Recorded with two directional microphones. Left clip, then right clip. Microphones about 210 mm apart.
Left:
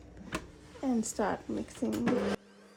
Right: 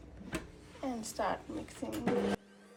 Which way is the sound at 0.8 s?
55° left (ahead or behind).